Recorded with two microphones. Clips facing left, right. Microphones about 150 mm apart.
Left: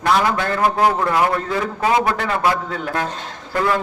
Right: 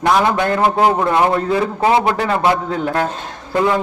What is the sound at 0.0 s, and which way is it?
A man's voice, 20° right (ahead or behind).